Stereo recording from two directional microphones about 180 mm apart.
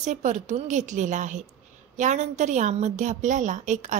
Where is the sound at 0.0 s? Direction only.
40° right (ahead or behind).